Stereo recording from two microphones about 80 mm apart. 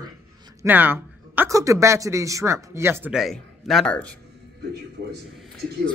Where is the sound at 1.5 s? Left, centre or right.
Right.